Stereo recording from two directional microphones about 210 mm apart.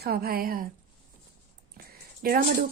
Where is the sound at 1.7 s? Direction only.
45° right (ahead or behind).